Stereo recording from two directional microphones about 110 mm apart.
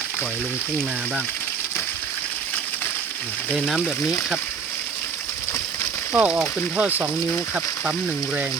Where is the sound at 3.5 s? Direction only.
Centre (ahead or behind).